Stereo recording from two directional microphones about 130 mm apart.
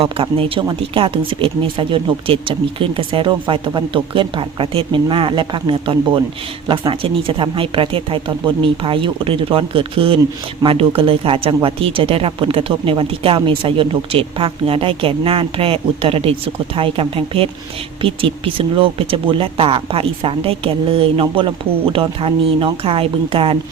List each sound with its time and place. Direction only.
0.0 s speech: 45° right (ahead or behind)